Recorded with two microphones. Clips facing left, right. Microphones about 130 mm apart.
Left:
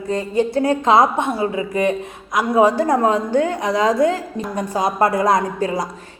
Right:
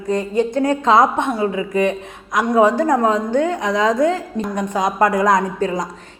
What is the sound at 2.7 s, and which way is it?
A man's voice, 30° left (ahead or behind).